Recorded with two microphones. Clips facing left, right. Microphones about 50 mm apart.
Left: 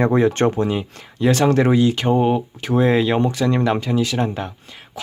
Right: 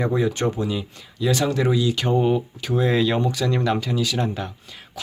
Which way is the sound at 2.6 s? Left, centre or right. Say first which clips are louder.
Left 4 dB; left.